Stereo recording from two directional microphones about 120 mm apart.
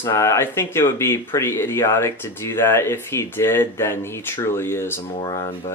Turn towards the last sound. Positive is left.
turn(degrees=35)  # may be behind; listen again after turning